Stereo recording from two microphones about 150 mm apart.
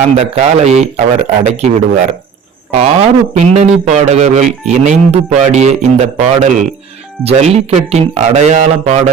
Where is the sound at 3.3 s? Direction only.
50° right (ahead or behind).